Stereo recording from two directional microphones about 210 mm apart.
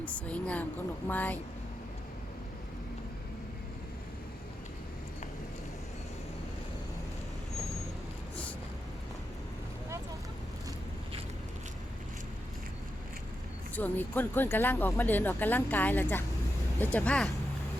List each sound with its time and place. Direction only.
0.0 s speech: 5° left (ahead or behind)
13.7 s speech: 10° left (ahead or behind)